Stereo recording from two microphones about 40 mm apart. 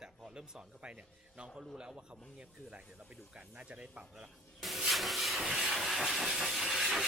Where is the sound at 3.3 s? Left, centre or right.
Right.